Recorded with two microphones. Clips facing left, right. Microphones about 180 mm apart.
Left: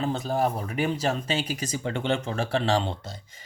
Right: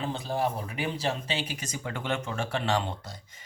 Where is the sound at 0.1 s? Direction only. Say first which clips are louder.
Left 4 dB; 45° left (ahead or behind).